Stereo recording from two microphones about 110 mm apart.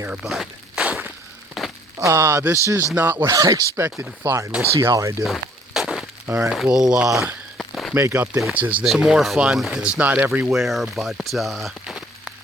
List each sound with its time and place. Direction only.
0.3 s walk: 5° right (ahead or behind)
1.6 s a sound: centre (ahead or behind)
2.0 s speech: 25° right (ahead or behind)
3.2 s speech: 30° right (ahead or behind)
5.2 s a sound: centre (ahead or behind)
6.2 s speech: 20° right (ahead or behind)
6.5 s speech: centre (ahead or behind)
7.6 s a sound: centre (ahead or behind)
8.1 s speech: 10° right (ahead or behind)
8.8 s speech: 5° right (ahead or behind)
10.5 s speech: centre (ahead or behind)